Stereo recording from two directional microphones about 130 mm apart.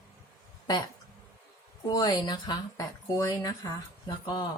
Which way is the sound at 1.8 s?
30° left (ahead or behind).